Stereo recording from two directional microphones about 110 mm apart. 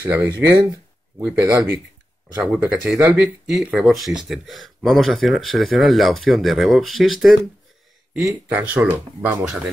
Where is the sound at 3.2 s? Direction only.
5° right (ahead or behind).